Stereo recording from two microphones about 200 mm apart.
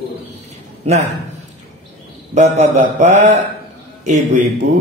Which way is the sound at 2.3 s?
35° right (ahead or behind).